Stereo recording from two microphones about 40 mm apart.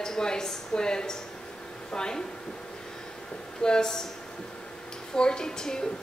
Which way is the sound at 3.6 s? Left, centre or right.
Centre.